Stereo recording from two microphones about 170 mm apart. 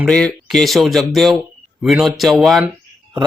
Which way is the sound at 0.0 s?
5° left (ahead or behind).